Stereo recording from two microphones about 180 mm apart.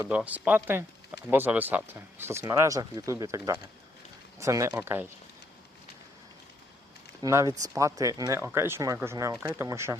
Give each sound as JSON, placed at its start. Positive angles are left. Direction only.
{"t": 0.1, "sound": "speech", "side_deg": -10}
{"t": 7.2, "sound": "speech", "side_deg": -20}